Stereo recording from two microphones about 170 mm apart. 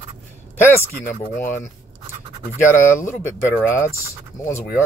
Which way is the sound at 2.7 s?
15° left (ahead or behind).